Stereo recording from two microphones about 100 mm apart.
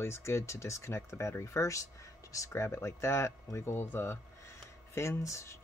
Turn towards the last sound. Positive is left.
turn(degrees=30)  # may be behind; listen again after turning